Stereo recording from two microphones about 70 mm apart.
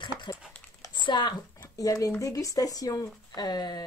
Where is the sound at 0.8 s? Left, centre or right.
Left.